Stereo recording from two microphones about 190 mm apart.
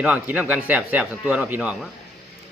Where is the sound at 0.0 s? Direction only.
5° right (ahead or behind).